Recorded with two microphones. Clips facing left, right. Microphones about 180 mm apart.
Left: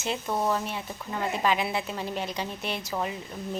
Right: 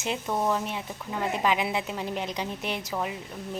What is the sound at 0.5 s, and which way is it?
Speech, 15° right (ahead or behind).